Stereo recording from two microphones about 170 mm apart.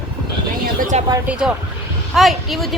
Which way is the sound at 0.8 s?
50° right (ahead or behind).